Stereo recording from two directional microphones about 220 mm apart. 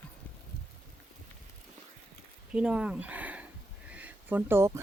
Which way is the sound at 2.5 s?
5° right (ahead or behind).